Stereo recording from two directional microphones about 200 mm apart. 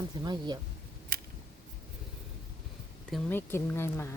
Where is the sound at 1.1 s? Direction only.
50° right (ahead or behind).